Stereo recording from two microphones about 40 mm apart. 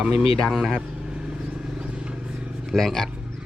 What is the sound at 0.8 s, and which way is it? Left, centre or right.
Vehicle, right.